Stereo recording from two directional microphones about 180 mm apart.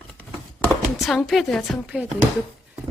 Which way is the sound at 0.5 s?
Centre (ahead or behind).